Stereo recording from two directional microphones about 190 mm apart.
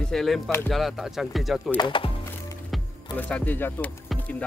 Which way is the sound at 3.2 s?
10° left (ahead or behind).